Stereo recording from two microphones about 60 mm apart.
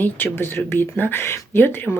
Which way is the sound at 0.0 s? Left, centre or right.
Left.